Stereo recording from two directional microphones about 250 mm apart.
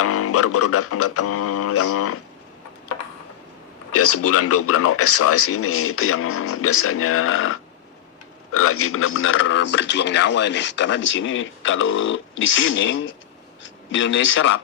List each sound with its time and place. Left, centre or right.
0.0 s speech: left
3.9 s speech: left